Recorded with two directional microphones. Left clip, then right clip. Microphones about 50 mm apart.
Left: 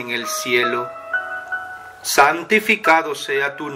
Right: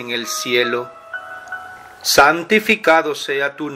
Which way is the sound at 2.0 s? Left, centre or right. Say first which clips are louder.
Right 3 dB; right.